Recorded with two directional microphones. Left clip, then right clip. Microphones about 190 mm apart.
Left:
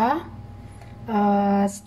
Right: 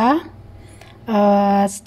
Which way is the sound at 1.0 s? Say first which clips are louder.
Right 6 dB; 45° right (ahead or behind).